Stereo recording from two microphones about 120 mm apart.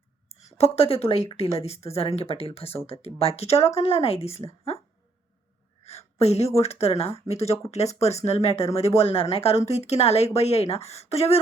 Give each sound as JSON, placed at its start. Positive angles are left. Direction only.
{"t": 0.3, "sound": "a sound", "side_deg": 65}
{"t": 0.6, "sound": "speech", "side_deg": 55}
{"t": 5.8, "sound": "speech", "side_deg": 60}